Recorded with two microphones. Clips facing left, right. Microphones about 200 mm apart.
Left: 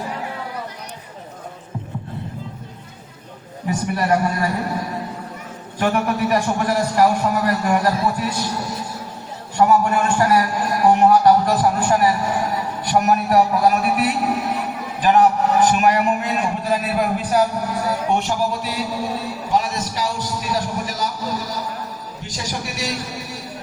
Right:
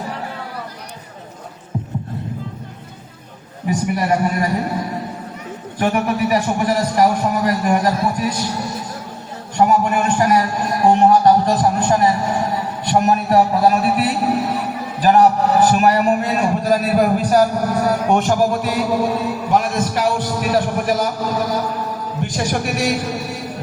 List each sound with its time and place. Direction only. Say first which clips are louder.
3.9 s a man's voice: left 1 dB; 15° right (ahead or behind)
5.8 s a man's voice: right 2 dB; 15° right (ahead or behind)
9.6 s a man's voice: right 1 dB; 20° right (ahead or behind); by 23.0 s 55° right (ahead or behind)